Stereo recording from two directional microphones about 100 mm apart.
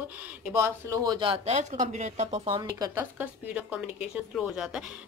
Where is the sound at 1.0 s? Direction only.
55° right (ahead or behind); by 1.6 s 80° right.